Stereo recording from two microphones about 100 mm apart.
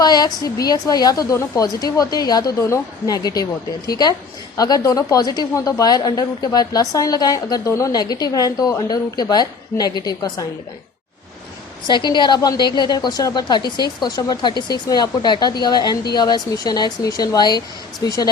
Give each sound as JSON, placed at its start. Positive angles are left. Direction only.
{"t": 0.0, "sound": "a woman's voice", "side_deg": 40}
{"t": 4.5, "sound": "a woman's voice", "side_deg": 40}
{"t": 11.9, "sound": "a woman's voice", "side_deg": 50}